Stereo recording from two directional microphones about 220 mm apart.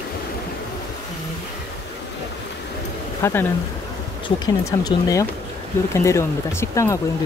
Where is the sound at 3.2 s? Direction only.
10° left (ahead or behind).